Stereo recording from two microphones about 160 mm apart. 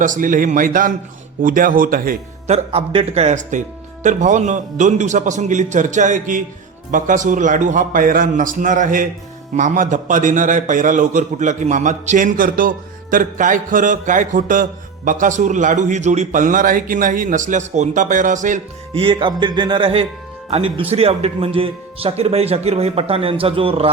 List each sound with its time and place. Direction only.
0.0 s a man's voice: 55° right (ahead or behind)
2.5 s a man's voice: 35° right (ahead or behind)
18.9 s speech: 30° right (ahead or behind)